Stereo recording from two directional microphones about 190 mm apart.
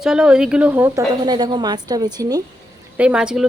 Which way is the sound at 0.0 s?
5° right (ahead or behind).